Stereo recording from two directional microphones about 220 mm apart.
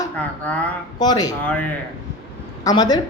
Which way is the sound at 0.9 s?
20° left (ahead or behind).